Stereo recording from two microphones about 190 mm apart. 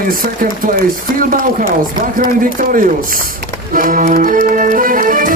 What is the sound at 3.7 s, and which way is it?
Music, 45° right (ahead or behind).